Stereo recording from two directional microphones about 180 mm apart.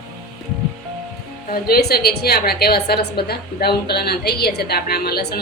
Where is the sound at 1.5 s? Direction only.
60° left (ahead or behind).